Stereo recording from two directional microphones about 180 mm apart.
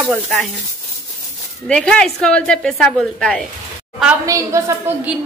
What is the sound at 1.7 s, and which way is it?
Child singing, 5° left (ahead or behind).